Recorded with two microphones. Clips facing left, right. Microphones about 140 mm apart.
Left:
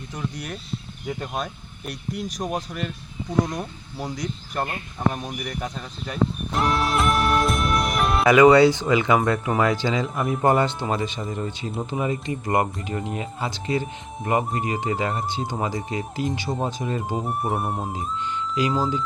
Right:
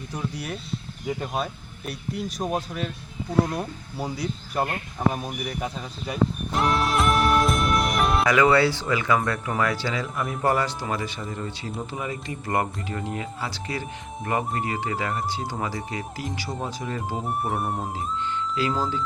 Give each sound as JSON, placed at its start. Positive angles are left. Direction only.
{"t": 0.1, "sound": "speech", "side_deg": -5}
{"t": 5.1, "sound": "music", "side_deg": -5}
{"t": 8.3, "sound": "speech", "side_deg": 20}
{"t": 17.2, "sound": "speech", "side_deg": 0}
{"t": 18.7, "sound": "speech", "side_deg": 15}